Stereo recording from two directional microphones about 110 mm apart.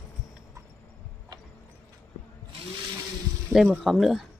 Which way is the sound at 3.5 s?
Centre (ahead or behind).